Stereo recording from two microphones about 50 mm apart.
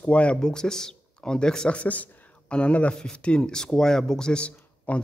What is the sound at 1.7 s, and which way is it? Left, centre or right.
Speech, left.